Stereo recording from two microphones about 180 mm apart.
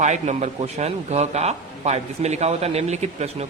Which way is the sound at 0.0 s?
40° right (ahead or behind).